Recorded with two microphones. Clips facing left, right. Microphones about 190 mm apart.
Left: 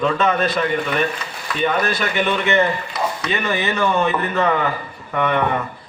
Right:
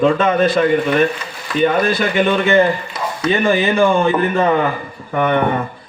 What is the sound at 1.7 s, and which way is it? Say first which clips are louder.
A man's voice: right 5 dB; 30° right (ahead or behind).